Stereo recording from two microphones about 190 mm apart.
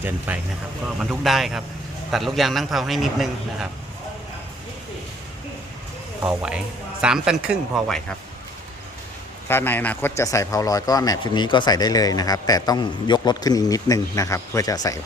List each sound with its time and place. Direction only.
0.3 s speech: 10° right (ahead or behind)
6.2 s speech: 5° right (ahead or behind)
9.5 s a man's voice: 10° left (ahead or behind)